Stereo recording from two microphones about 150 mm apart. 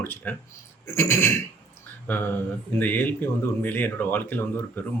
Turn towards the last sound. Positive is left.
turn(degrees=15)  # may be behind; listen again after turning